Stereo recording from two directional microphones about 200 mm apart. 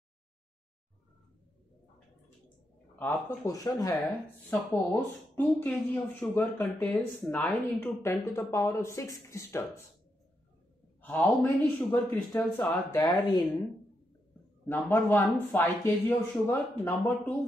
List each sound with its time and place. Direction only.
3.0 s speech: 15° left (ahead or behind)
11.0 s speech: 10° left (ahead or behind)
14.7 s speech: 10° left (ahead or behind)